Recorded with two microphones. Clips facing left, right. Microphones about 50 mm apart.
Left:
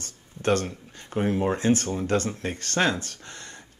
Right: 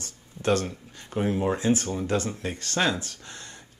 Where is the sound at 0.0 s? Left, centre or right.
Left.